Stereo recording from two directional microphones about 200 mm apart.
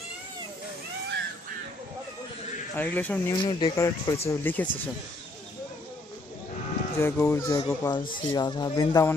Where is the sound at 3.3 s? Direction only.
25° left (ahead or behind).